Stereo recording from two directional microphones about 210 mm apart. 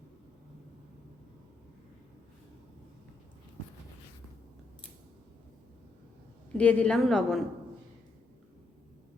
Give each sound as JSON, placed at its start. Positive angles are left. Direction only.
{"t": 6.6, "sound": "a woman's voice", "side_deg": 5}